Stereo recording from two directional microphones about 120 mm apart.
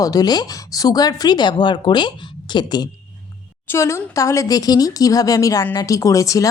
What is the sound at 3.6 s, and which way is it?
A woman's voice, 20° left (ahead or behind).